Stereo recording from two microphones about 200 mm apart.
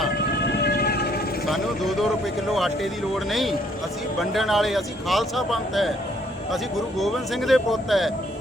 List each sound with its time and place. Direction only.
0.6 s train: 50° left (ahead or behind)
1.5 s speech: centre (ahead or behind)
3.2 s speech: centre (ahead or behind)